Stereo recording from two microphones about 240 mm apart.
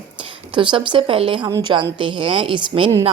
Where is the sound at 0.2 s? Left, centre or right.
Right.